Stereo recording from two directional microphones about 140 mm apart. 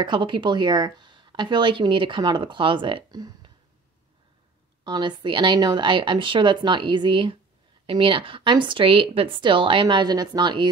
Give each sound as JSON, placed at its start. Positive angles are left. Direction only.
{"t": 0.0, "sound": "a woman's voice", "side_deg": -35}
{"t": 4.8, "sound": "a woman's voice", "side_deg": -30}